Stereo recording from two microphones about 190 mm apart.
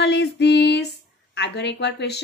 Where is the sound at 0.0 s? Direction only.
60° left (ahead or behind).